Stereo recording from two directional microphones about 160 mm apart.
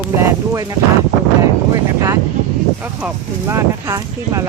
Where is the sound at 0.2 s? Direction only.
20° right (ahead or behind).